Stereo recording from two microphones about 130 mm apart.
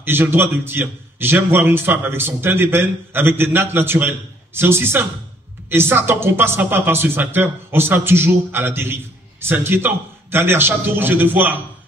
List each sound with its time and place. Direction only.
0.0 s speech: 15° right (ahead or behind)